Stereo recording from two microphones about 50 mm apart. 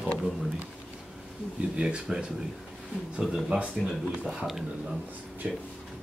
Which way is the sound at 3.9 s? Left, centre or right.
Centre.